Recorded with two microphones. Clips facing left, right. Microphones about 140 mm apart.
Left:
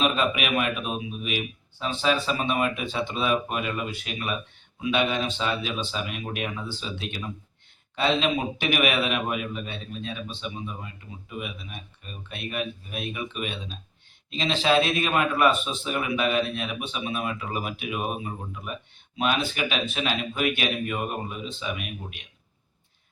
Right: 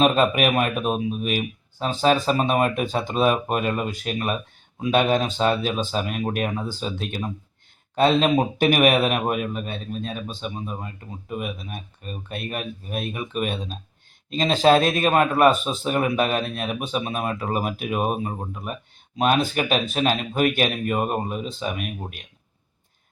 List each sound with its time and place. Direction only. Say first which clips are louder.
0.0 s a man's voice: right 6 dB; 45° right (ahead or behind)